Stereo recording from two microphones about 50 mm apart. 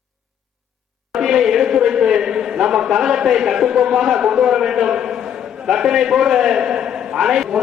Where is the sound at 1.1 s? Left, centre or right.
Centre.